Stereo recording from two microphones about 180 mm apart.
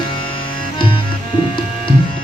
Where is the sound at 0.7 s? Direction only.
30° left (ahead or behind).